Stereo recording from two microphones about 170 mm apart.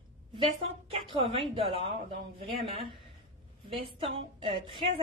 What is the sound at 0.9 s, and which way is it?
A woman's voice, 35° right (ahead or behind).